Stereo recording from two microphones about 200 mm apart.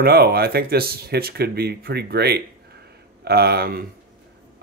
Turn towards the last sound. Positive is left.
turn(degrees=-50)  # may be behind; listen again after turning